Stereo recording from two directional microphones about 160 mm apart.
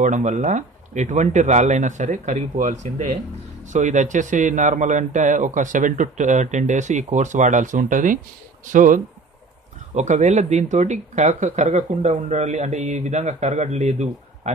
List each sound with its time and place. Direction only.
0.0 s speech: 50° right (ahead or behind)